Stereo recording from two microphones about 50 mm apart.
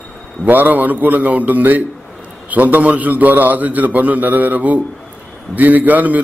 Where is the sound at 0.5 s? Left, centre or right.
Right.